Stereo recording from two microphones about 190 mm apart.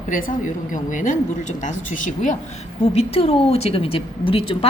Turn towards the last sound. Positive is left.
turn(degrees=30)  # may be behind; listen again after turning